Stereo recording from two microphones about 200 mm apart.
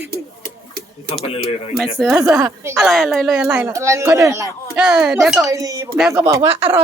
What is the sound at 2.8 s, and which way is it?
A woman's voice, centre (ahead or behind).